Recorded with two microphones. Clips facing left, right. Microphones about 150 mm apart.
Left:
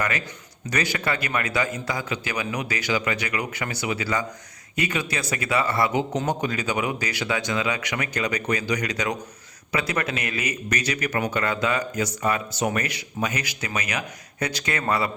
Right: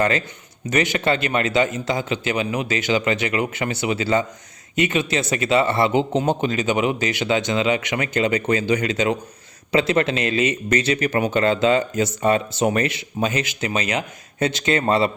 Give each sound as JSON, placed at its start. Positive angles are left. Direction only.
{"t": 0.7, "sound": "speech", "side_deg": -20}